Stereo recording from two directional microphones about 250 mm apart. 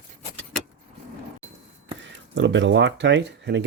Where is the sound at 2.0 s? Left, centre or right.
Right.